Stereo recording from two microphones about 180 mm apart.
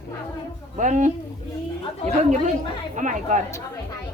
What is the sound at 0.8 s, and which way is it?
Speech, 45° right (ahead or behind).